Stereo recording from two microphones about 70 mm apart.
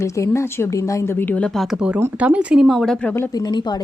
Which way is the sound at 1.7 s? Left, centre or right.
Centre.